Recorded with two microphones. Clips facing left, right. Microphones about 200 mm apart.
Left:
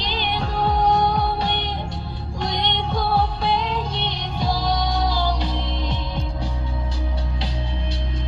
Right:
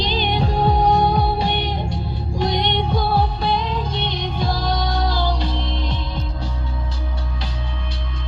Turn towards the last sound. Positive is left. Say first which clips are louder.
# even
turn(degrees=10)  # may be behind; listen again after turning